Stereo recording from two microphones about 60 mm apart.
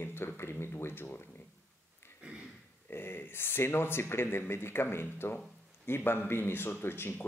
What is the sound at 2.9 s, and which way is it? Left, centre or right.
Speech, left.